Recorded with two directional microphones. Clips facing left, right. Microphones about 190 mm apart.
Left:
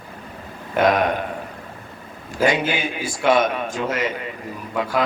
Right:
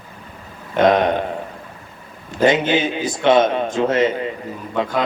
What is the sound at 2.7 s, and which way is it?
A man's voice, 25° right (ahead or behind).